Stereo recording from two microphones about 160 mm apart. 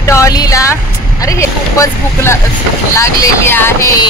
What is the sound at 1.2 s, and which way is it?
Speech, 20° left (ahead or behind).